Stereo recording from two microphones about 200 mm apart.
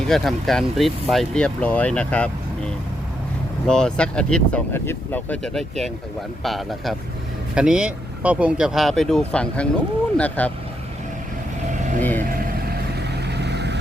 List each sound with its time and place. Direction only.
0.1 s speech: centre (ahead or behind)
11.7 s vehicle: 40° right (ahead or behind)
12.7 s vehicle: 55° right (ahead or behind)